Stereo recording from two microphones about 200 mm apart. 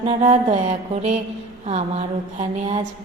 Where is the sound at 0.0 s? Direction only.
35° right (ahead or behind).